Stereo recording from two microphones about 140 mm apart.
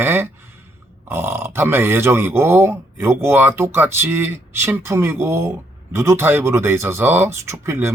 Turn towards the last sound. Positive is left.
turn(degrees=-20)  # may be behind; listen again after turning